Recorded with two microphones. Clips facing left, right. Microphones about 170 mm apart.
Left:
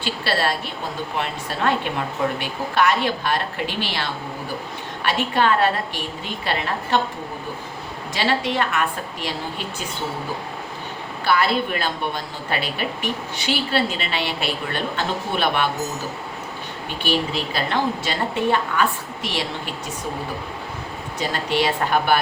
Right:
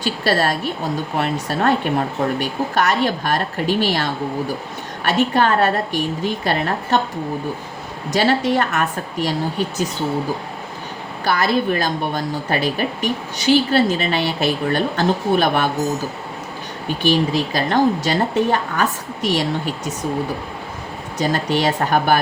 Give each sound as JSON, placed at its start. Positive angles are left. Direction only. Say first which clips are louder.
{"t": 0.0, "sound": "speech", "louder": "right 4 dB", "side_deg": -45}
{"t": 8.1, "sound": "speech", "louder": "right 6 dB", "side_deg": -45}
{"t": 11.3, "sound": "speech", "louder": "right 2 dB", "side_deg": -40}
{"t": 17.0, "sound": "speech", "louder": "right 6 dB", "side_deg": -40}
{"t": 21.2, "sound": "speech", "louder": "right 3 dB", "side_deg": -45}